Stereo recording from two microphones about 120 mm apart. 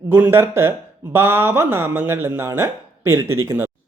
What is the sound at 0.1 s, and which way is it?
Speech, 20° right (ahead or behind).